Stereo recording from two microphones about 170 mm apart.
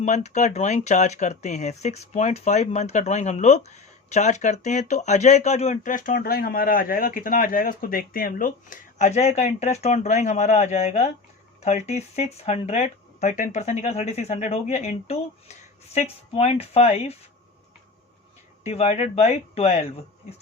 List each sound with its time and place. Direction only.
0.0 s speech: 45° left (ahead or behind)
18.6 s speech: 35° left (ahead or behind)